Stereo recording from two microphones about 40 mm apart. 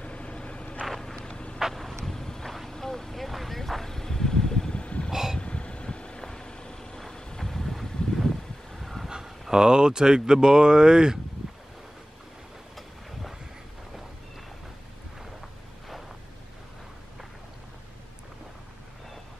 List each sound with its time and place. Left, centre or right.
0.0 s vehicle: left
0.8 s vehicle: centre
1.3 s vehicle: left
1.6 s vehicle: centre
4.7 s vehicle: left
5.1 s vehicle: centre
5.4 s vehicle: left; by 9.1 s centre
9.5 s speech: centre